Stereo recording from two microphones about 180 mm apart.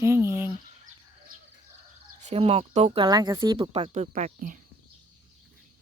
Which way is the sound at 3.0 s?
20° right (ahead or behind).